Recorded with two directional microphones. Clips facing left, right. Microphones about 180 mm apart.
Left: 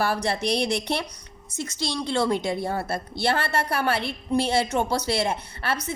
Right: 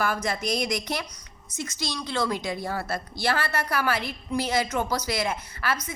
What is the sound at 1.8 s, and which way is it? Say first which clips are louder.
A woman's voice: left 4 dB; 25° left (ahead or behind).